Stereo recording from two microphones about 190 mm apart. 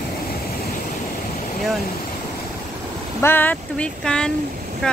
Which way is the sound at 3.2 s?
10° left (ahead or behind).